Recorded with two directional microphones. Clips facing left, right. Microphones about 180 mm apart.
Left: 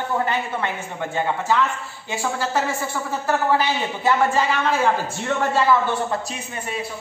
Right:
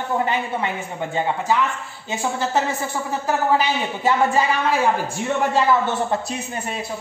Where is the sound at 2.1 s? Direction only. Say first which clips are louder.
Right 1 dB; 20° right (ahead or behind).